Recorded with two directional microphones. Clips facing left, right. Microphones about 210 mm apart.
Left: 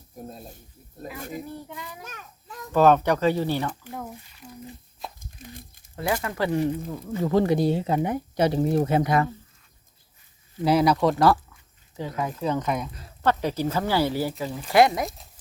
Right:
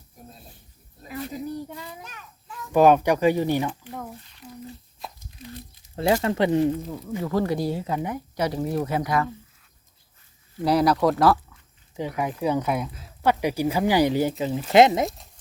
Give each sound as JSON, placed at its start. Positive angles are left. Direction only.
{"t": 0.3, "sound": "speech", "side_deg": 45}
{"t": 1.7, "sound": "speech", "side_deg": -30}
{"t": 2.0, "sound": "children playing", "side_deg": 45}
{"t": 2.7, "sound": "speech", "side_deg": -10}
{"t": 3.9, "sound": "a sound", "side_deg": 0}
{"t": 5.0, "sound": "crumpling", "side_deg": 0}
{"t": 5.4, "sound": "crumpling", "side_deg": 50}
{"t": 6.0, "sound": "speech", "side_deg": -25}
{"t": 7.2, "sound": "speech", "side_deg": 25}
{"t": 10.6, "sound": "speech", "side_deg": 0}
{"t": 11.9, "sound": "speech", "side_deg": -15}
{"t": 15.0, "sound": "speech", "side_deg": 0}